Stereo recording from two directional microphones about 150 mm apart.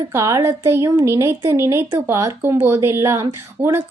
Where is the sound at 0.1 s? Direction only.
20° right (ahead or behind).